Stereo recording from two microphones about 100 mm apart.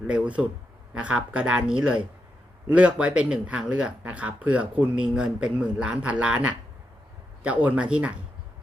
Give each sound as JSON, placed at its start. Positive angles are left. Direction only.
{"t": 0.1, "sound": "speech", "side_deg": -15}